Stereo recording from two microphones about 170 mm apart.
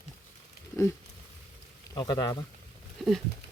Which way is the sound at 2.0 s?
25° left (ahead or behind).